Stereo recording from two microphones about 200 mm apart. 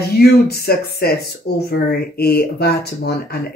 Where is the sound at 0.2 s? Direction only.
50° left (ahead or behind).